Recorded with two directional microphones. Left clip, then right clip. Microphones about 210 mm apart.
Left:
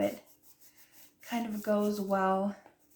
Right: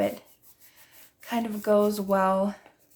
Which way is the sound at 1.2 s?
40° right (ahead or behind).